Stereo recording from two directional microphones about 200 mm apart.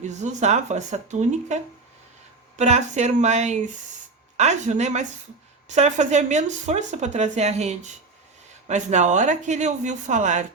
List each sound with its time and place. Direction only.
0.0 s speech: 35° right (ahead or behind)
2.6 s speech: 35° right (ahead or behind)